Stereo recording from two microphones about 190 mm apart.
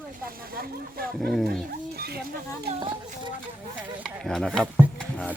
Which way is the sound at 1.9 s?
55° right (ahead or behind).